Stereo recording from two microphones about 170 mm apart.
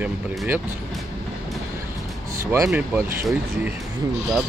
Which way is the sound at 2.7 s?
10° right (ahead or behind).